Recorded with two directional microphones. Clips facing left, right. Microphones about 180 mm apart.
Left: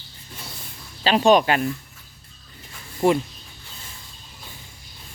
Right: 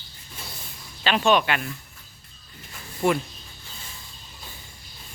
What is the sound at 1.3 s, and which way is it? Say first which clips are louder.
Speech: left 5 dB; 40° left (ahead or behind).